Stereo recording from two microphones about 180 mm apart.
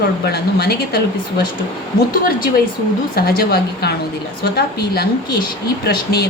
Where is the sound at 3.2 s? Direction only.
60° left (ahead or behind).